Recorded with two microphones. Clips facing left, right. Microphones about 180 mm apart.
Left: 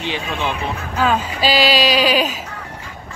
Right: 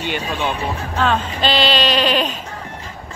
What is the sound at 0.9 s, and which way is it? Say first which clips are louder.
Speech: left 1 dB; 5° left (ahead or behind).